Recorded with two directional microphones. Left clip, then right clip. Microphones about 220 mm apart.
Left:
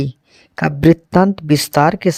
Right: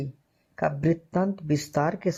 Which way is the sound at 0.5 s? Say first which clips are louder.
Left 12 dB; 35° left (ahead or behind).